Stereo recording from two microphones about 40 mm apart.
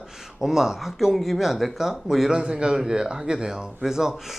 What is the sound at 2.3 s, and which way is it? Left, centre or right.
Speech, right.